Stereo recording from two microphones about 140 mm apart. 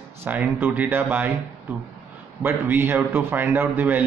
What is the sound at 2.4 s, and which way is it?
Speech, 15° right (ahead or behind).